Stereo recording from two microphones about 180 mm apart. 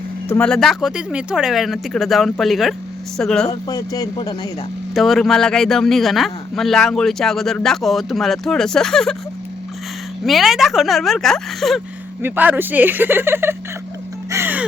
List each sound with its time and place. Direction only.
0.3 s a man's voice: 5° left (ahead or behind)
3.5 s speech: 20° left (ahead or behind)
4.9 s a man's voice: centre (ahead or behind)
10.2 s a man's voice: centre (ahead or behind)
12.2 s speech: 10° right (ahead or behind)
14.3 s music: 15° right (ahead or behind)